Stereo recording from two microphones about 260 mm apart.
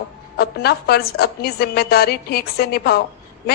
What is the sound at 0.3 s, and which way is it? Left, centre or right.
A woman's voice, left.